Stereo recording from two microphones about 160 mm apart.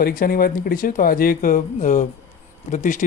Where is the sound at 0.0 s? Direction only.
65° left (ahead or behind).